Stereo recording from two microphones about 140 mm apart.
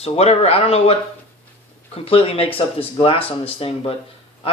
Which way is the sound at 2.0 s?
45° left (ahead or behind).